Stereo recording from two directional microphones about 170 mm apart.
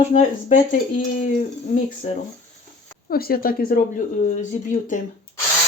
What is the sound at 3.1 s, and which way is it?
Speech, 60° left (ahead or behind).